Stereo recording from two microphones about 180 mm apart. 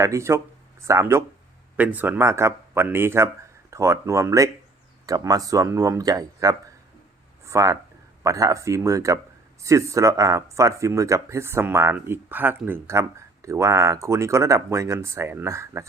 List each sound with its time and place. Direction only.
0.0 s speech: 15° right (ahead or behind)